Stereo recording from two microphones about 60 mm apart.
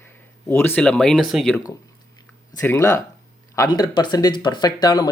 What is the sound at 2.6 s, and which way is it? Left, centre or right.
Speech, left.